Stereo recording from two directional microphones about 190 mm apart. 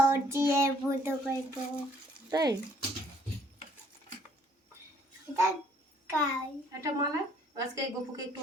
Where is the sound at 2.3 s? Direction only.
20° right (ahead or behind).